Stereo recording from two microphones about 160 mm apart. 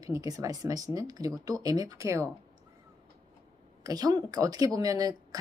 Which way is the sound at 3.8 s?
25° right (ahead or behind).